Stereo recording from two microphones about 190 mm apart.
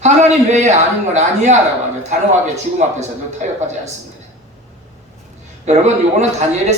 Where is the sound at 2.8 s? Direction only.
35° right (ahead or behind).